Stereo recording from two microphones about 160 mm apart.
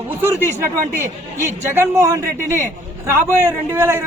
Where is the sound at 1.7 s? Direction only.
15° right (ahead or behind).